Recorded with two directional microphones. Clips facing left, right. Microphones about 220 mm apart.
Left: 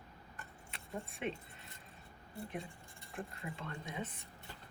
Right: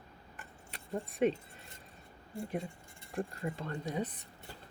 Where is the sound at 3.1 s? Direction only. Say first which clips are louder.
Right 8 dB; 40° right (ahead or behind).